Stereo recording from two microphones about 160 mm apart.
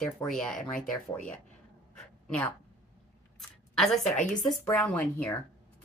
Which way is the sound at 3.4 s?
Centre (ahead or behind).